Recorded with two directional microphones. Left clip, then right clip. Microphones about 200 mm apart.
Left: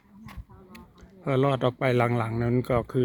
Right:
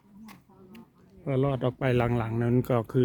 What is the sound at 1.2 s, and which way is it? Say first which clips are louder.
Speech: left 4 dB; 15° left (ahead or behind).